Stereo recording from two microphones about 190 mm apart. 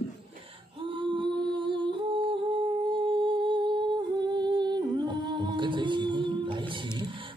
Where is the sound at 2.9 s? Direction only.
25° right (ahead or behind).